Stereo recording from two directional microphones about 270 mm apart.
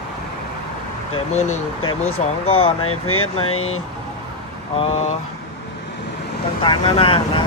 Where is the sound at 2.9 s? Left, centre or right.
Left.